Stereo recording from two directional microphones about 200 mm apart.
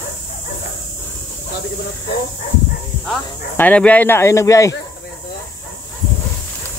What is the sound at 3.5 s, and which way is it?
Speech, 5° left (ahead or behind).